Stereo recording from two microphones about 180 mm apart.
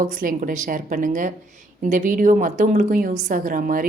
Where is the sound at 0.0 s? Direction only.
50° right (ahead or behind).